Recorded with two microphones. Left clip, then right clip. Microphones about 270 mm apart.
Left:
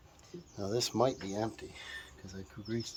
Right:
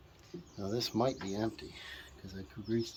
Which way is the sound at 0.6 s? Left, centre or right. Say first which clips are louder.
Left 3 dB; left.